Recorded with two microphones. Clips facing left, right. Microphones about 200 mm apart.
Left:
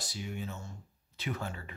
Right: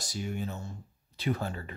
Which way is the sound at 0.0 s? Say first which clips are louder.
Right 4 dB; 45° right (ahead or behind).